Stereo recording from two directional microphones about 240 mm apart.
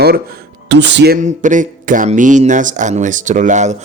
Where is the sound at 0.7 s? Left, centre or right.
Right.